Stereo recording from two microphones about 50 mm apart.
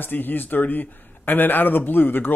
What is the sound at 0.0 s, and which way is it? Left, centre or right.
A man's voice, left.